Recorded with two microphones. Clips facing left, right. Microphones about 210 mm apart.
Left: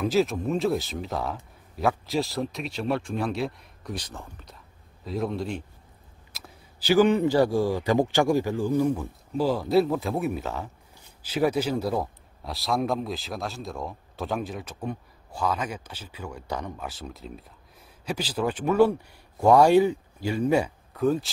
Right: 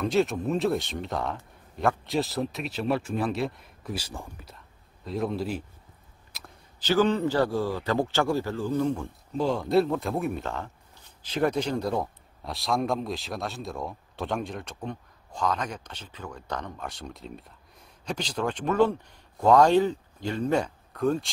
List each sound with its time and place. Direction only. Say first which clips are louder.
0.0 s a man's voice: left 1 dB; centre (ahead or behind)
4.6 s a sound: left 1 dB; centre (ahead or behind)
6.3 s a man's voice: left 1 dB; 5° left (ahead or behind)